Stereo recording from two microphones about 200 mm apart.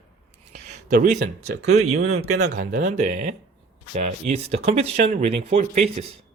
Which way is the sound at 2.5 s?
40° right (ahead or behind).